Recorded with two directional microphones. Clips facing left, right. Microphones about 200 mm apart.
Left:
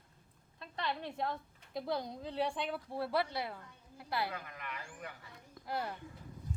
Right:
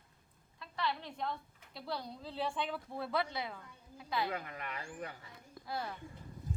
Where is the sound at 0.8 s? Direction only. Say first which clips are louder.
Left 1 dB; 50° left (ahead or behind).